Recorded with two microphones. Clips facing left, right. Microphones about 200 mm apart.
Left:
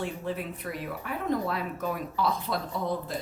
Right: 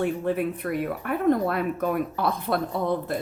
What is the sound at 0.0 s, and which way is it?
A woman's voice, 60° right (ahead or behind).